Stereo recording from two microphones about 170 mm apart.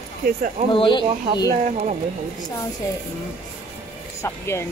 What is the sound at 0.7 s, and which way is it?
Speech, 30° left (ahead or behind).